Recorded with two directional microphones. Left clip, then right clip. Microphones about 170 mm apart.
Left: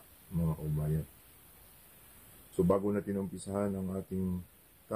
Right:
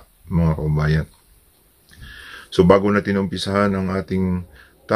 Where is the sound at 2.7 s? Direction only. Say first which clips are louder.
Right 16 dB; centre (ahead or behind).